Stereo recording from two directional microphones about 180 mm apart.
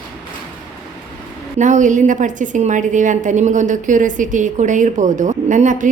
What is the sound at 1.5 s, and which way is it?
A woman's voice, 45° right (ahead or behind).